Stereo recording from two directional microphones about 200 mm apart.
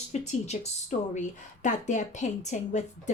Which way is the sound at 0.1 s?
35° left (ahead or behind).